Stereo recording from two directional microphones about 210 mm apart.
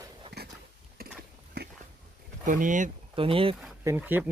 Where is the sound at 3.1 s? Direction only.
25° right (ahead or behind).